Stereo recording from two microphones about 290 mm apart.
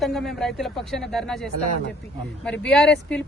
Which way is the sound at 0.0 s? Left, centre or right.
Centre.